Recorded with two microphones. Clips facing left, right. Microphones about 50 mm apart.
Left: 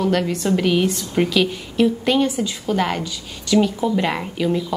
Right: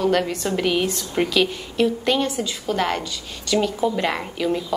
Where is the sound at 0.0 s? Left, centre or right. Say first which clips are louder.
Left 1 dB; centre.